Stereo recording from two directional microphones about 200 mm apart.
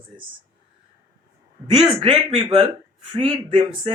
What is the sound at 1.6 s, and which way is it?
Speech, 25° right (ahead or behind).